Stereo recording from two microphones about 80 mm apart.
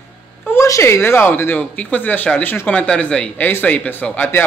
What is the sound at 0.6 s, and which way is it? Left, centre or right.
Speech, left.